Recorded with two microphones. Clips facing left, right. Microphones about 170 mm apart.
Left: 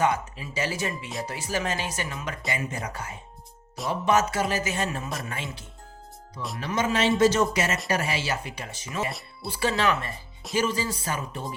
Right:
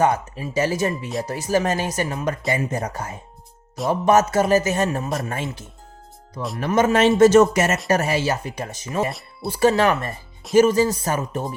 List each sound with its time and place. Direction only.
0.0 s speech: 45° right (ahead or behind)